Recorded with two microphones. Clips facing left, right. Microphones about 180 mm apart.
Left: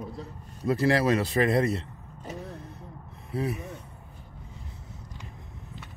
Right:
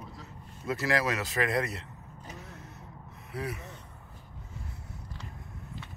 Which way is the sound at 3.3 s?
25° left (ahead or behind).